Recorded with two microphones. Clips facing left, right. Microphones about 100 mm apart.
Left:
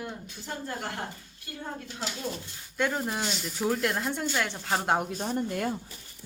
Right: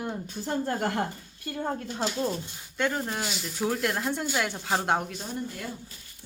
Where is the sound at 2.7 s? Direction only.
Centre (ahead or behind).